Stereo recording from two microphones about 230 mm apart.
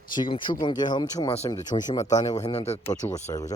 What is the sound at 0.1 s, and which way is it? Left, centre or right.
Speech, centre.